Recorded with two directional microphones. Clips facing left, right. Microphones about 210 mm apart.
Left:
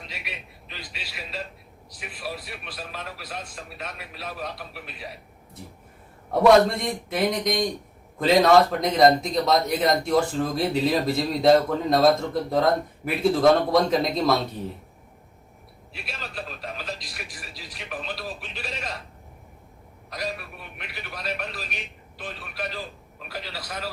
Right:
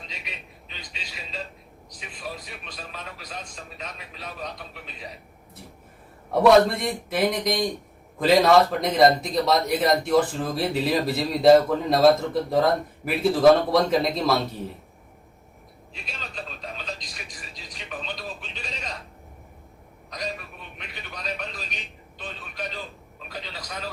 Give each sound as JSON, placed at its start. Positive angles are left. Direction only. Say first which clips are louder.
{"t": 0.1, "sound": "a man's voice", "louder": "left 2 dB", "side_deg": 5}
{"t": 6.4, "sound": "a man's voice", "louder": "even", "side_deg": 0}
{"t": 16.0, "sound": "a man's voice", "louder": "left 2 dB", "side_deg": 5}
{"t": 20.1, "sound": "a man's voice", "louder": "left 1 dB", "side_deg": 5}